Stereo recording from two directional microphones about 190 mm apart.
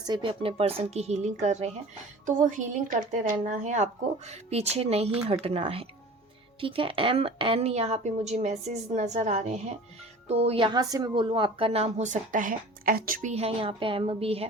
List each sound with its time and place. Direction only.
0.0 s speech: 25° right (ahead or behind)